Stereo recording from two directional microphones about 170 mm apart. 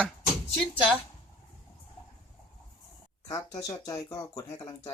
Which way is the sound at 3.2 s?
20° left (ahead or behind).